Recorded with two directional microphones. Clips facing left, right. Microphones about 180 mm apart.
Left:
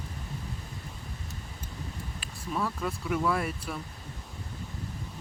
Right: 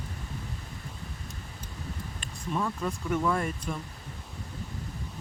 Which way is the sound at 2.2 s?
Centre (ahead or behind).